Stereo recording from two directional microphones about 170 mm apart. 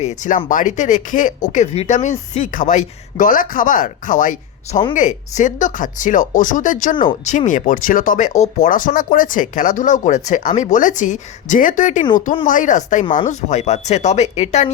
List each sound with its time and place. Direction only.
0.0 s speech: 45° left (ahead or behind)